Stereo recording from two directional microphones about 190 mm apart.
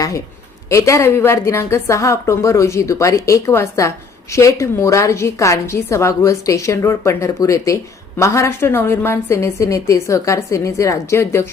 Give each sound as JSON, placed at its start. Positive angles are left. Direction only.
{"t": 0.7, "sound": "a woman's voice", "side_deg": 15}